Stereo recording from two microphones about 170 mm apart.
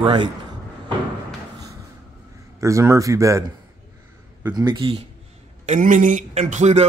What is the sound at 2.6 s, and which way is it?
Speech, 15° right (ahead or behind).